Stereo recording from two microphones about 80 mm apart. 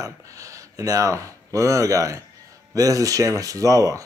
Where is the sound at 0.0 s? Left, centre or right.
Right.